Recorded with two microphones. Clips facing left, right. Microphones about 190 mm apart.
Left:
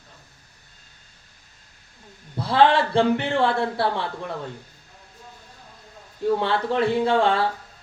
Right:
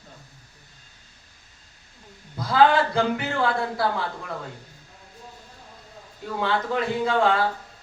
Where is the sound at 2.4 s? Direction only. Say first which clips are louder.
Left 1 dB; 30° left (ahead or behind).